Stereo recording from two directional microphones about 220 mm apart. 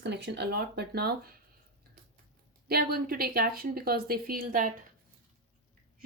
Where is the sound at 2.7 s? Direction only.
45° right (ahead or behind).